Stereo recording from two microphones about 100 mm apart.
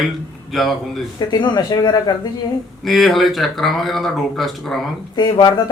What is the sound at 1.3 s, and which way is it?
Speech, 50° left (ahead or behind).